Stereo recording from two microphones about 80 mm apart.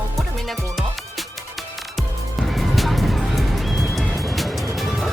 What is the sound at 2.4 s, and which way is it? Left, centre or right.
Music, centre.